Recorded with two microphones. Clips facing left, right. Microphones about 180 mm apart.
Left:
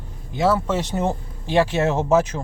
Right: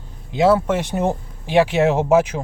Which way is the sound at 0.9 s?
15° right (ahead or behind).